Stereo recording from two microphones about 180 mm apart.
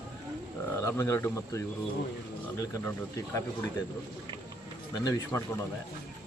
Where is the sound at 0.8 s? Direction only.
15° left (ahead or behind).